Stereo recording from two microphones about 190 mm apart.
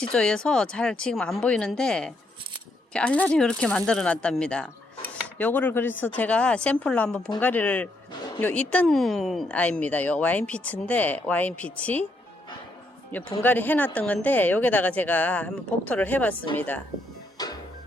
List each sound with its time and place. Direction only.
0.1 s speech: 5° left (ahead or behind)
13.4 s speech: 10° left (ahead or behind)
17.3 s music: 20° left (ahead or behind)